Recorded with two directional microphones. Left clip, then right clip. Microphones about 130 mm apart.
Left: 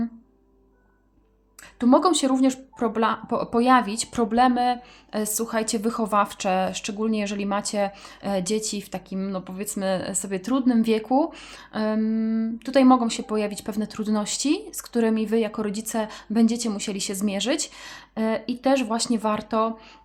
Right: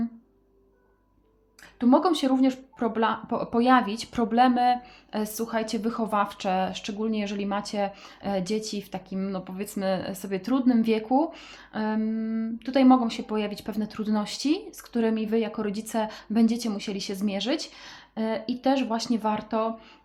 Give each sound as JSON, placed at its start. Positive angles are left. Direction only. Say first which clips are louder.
{"t": 1.8, "sound": "speech", "louder": "left 3 dB", "side_deg": 40}